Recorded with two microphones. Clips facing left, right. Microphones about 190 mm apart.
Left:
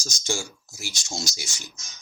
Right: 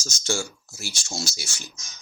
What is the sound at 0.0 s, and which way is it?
Speech, 15° left (ahead or behind).